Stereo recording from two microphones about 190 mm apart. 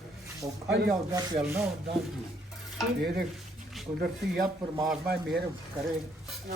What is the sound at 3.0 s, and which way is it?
Speech, 60° right (ahead or behind).